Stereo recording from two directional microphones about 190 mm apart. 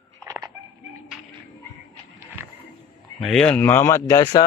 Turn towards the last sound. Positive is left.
turn(degrees=20)  # may be behind; listen again after turning